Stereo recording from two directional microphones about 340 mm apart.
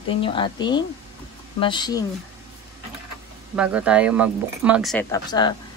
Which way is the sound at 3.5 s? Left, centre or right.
Centre.